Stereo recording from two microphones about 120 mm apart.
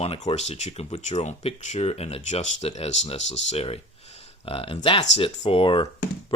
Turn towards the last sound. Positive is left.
turn(degrees=45)  # may be behind; listen again after turning